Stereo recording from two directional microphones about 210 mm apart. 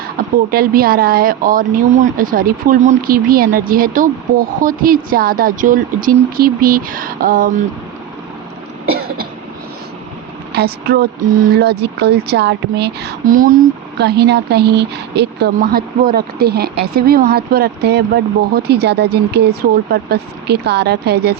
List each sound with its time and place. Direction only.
0.2 s speech: 45° right (ahead or behind)
8.9 s cough: 45° right (ahead or behind)
10.5 s speech: 50° right (ahead or behind)